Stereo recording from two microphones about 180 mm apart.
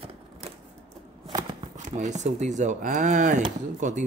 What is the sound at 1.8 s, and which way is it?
Speech, 40° right (ahead or behind).